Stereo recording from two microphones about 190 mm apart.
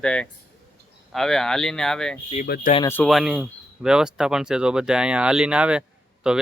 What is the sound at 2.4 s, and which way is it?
Speech, 55° left (ahead or behind).